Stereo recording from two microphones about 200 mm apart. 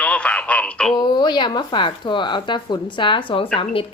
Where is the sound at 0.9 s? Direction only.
20° left (ahead or behind).